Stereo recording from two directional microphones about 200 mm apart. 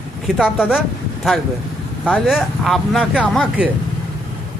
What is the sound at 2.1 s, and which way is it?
Speech, 5° right (ahead or behind).